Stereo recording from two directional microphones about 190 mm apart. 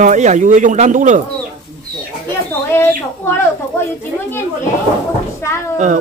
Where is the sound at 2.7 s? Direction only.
10° left (ahead or behind).